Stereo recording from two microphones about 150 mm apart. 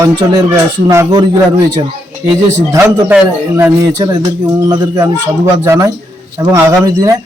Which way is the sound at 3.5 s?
20° right (ahead or behind).